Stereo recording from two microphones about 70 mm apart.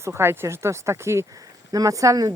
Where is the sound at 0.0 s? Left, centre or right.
Right.